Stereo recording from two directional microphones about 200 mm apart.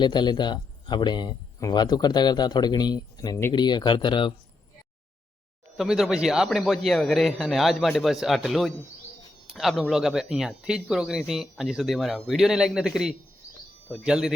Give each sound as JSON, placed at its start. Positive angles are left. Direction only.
{"t": 0.0, "sound": "speech", "side_deg": 20}
{"t": 5.7, "sound": "speech", "side_deg": 0}